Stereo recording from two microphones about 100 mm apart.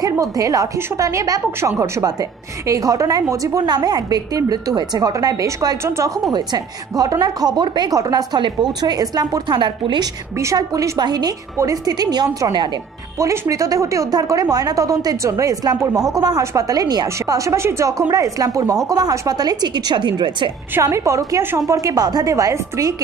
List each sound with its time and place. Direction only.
0.0 s a woman's voice: 35° right (ahead or behind)
5.9 s speech: 30° right (ahead or behind)
6.3 s a woman's voice: 40° right (ahead or behind)
10.3 s speech: 30° right (ahead or behind)
11.5 s speech: 35° right (ahead or behind); by 20.5 s 50° right (ahead or behind)
20.8 s speech: 30° right (ahead or behind)